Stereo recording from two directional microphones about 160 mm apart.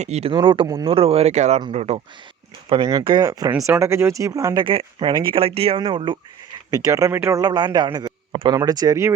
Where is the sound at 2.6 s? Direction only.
30° right (ahead or behind).